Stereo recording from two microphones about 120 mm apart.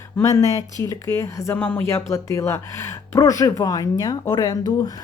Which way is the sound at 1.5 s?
10° left (ahead or behind).